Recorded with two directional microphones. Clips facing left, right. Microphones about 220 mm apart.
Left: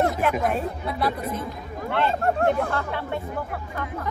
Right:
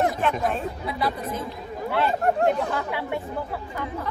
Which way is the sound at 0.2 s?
5° left (ahead or behind).